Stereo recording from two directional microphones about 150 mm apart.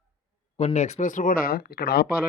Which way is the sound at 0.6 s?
45° left (ahead or behind).